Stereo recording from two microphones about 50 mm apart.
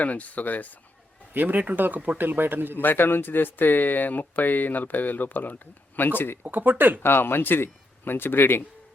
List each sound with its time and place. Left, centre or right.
0.0 s speech: left
1.3 s speech: right
2.8 s speech: left
6.4 s speech: right
7.0 s speech: left